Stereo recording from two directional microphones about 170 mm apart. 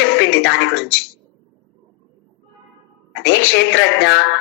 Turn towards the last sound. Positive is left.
turn(degrees=90)